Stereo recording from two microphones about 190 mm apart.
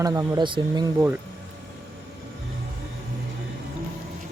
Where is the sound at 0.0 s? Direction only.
20° right (ahead or behind).